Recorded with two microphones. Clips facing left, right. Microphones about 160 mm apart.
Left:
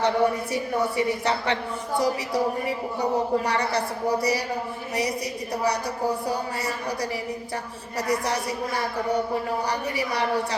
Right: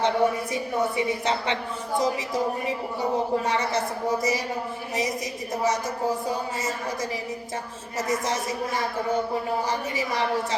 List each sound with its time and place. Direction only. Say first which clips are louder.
0.0 s speech: even; 20° right (ahead or behind)